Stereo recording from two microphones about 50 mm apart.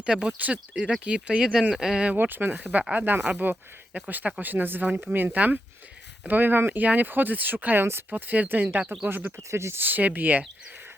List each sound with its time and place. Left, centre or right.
0.0 s speech: right
0.7 s speech: centre
2.1 s speech: right
9.5 s speech: right
9.7 s speech: right